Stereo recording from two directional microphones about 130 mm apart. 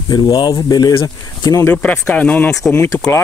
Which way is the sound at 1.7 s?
10° left (ahead or behind).